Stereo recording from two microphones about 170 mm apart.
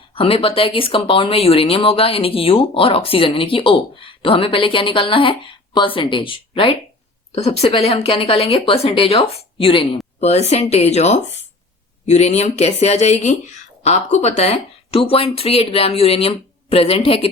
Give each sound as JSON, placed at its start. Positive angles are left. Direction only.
{"t": 0.2, "sound": "speech", "side_deg": 35}